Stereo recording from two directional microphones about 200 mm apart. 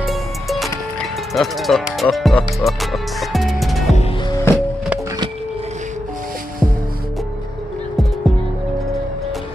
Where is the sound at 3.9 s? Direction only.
30° left (ahead or behind).